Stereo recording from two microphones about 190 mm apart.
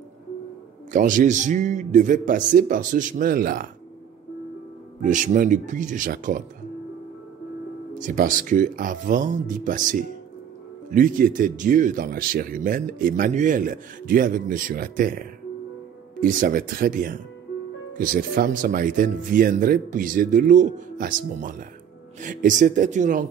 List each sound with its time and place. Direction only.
0.9 s speech: 40° right (ahead or behind)
5.0 s speech: 40° right (ahead or behind)
7.9 s speech: 45° right (ahead or behind)